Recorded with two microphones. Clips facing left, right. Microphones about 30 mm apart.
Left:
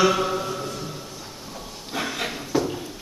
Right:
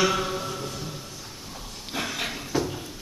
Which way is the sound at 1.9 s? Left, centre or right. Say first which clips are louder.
Left 2 dB; centre.